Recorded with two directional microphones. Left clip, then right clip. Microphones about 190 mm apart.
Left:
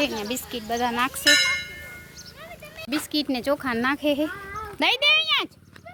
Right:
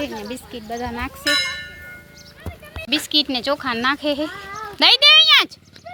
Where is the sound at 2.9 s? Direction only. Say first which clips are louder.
Right 7 dB; 10° left (ahead or behind).